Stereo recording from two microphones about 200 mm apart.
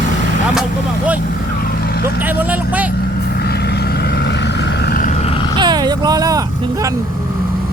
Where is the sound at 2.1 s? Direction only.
10° right (ahead or behind).